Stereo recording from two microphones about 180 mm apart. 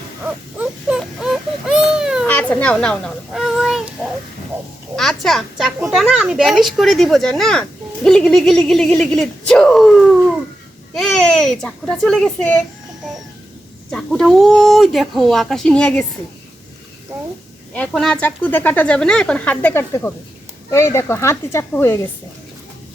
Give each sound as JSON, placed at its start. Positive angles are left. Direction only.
{"t": 0.2, "sound": "baby cry", "side_deg": -5}
{"t": 2.2, "sound": "a child's voice", "side_deg": 10}
{"t": 13.9, "sound": "speech", "side_deg": 0}
{"t": 17.7, "sound": "speech", "side_deg": 5}